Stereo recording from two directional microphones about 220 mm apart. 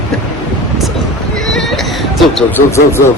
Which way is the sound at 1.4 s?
Centre (ahead or behind).